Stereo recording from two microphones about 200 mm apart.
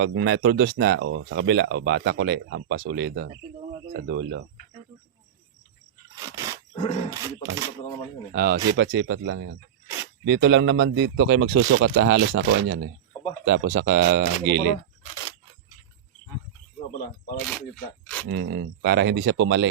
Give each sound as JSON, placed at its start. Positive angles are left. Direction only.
{"t": 0.0, "sound": "speech", "side_deg": -60}
{"t": 6.1, "sound": "wild animals", "side_deg": -15}
{"t": 7.1, "sound": "a sound", "side_deg": -15}
{"t": 8.3, "sound": "speech", "side_deg": -50}
{"t": 18.0, "sound": "a sound", "side_deg": 10}
{"t": 18.3, "sound": "speech", "side_deg": -55}